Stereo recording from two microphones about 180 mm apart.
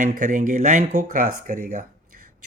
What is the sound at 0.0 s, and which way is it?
Speech, 45° right (ahead or behind).